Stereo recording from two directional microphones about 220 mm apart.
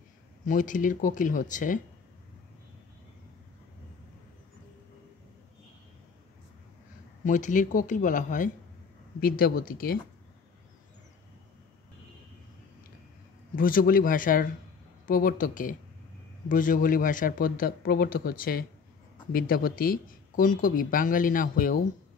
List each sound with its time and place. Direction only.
0.5 s speech: 35° left (ahead or behind)
7.2 s speech: 35° left (ahead or behind)
13.6 s speech: 40° left (ahead or behind)